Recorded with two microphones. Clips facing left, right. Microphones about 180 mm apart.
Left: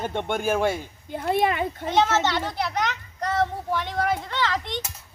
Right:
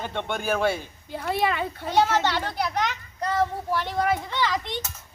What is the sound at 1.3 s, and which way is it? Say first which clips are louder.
Speech: left 2 dB; 50° left (ahead or behind).